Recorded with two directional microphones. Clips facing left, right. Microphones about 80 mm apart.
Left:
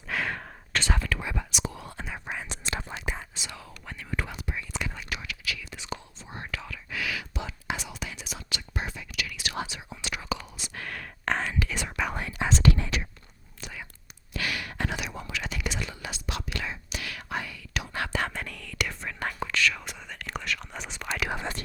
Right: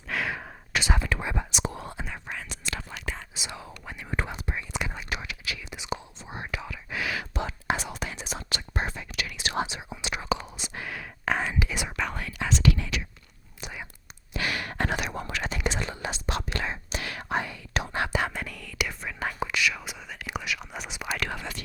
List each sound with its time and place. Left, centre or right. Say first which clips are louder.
0.1 s whispering: even; centre; by 2.0 s right
2.4 s whispering: left 2 dB; left
3.3 s whispering: right 3 dB; centre
4.2 s whispering: right 3 dB; right
7.2 s whispering: right 4 dB; right
9.3 s whispering: right 8 dB; right
10.8 s whispering: right 1 dB; centre
12.1 s whispering: left 1 dB; left
12.5 s whispering: even; left
13.6 s whispering: right 2 dB; centre
14.3 s gasp: right 2 dB; right
14.6 s whispering: right 4 dB; right
18.0 s whispering: even; centre
21.2 s whispering: left 3 dB; left